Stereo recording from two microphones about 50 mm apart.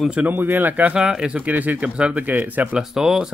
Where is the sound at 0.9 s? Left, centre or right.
Centre.